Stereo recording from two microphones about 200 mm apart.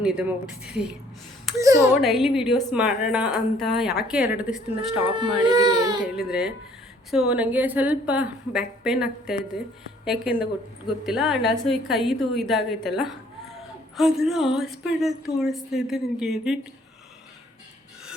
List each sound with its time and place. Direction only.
0.0 s a woman's voice: 5° right (ahead or behind)
1.5 s a woman's voice: 15° right (ahead or behind)
2.0 s a woman's voice: centre (ahead or behind)
5.0 s speech: 25° right (ahead or behind)
6.0 s a woman's voice: 5° right (ahead or behind)